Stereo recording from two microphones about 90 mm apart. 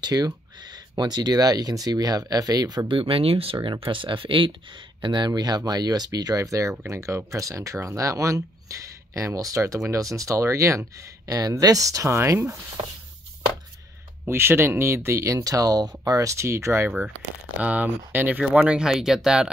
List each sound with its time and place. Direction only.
0.0 s speech: 50° right (ahead or behind)
2.9 s speech: 85° right
3.6 s speech: 70° right (ahead or behind)
5.0 s speech: 55° right (ahead or behind); by 12.5 s 30° right (ahead or behind)
14.2 s speech: 25° right (ahead or behind)
17.6 s speech: 20° right (ahead or behind)